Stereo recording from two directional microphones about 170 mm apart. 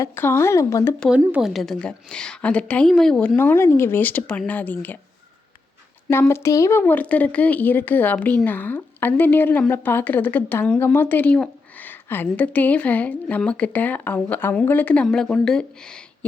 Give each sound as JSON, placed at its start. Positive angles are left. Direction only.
{"t": 0.0, "sound": "speech", "side_deg": 15}
{"t": 0.9, "sound": "speech", "side_deg": 5}
{"t": 6.1, "sound": "speech", "side_deg": 15}